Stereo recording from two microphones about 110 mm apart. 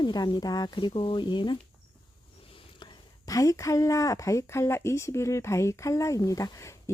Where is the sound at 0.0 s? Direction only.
40° left (ahead or behind).